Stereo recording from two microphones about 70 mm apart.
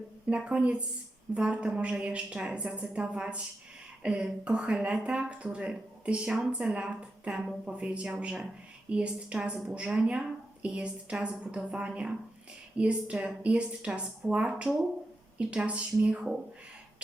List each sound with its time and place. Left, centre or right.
0.3 s speech: centre